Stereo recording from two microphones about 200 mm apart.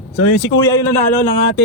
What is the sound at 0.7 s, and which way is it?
Speech, 15° left (ahead or behind).